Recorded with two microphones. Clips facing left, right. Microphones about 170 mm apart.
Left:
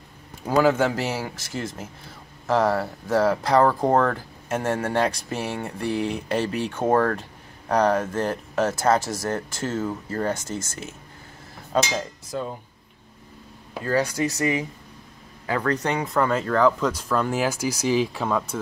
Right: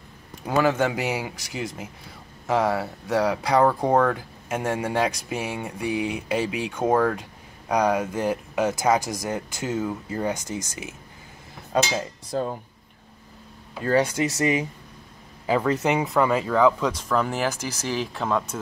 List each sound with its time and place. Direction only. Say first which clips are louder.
0.5 s speech: left 2 dB; centre (ahead or behind)
0.8 s speech: even; 10° right (ahead or behind)
1.3 s speech: left 1 dB; centre (ahead or behind)
13.8 s speech: right 2 dB; 25° right (ahead or behind)
16.1 s speech: right 1 dB; 5° right (ahead or behind)
17.4 s speech: left 3 dB; 10° left (ahead or behind)